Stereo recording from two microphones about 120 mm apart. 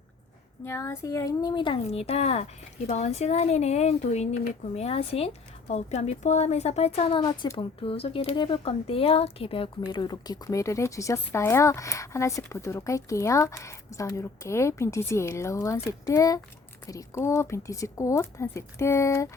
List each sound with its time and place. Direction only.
0.6 s speech: 20° left (ahead or behind); by 1.8 s 40° left (ahead or behind)
1.9 s speech: 60° left (ahead or behind)
7.1 s speech: 35° left (ahead or behind)